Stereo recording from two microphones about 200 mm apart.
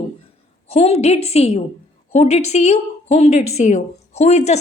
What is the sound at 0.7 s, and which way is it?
A woman's voice, 30° left (ahead or behind).